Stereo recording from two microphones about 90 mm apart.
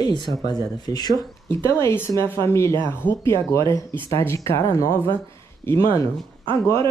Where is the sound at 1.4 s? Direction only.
30° left (ahead or behind).